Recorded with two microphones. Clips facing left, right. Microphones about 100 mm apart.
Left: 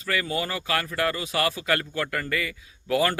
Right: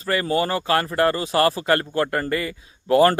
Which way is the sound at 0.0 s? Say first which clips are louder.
Right 6 dB; 35° right (ahead or behind).